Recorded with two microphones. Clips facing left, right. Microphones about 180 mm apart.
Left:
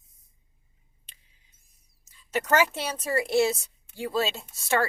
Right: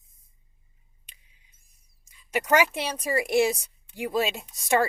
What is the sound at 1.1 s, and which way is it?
Scissors, 15° right (ahead or behind).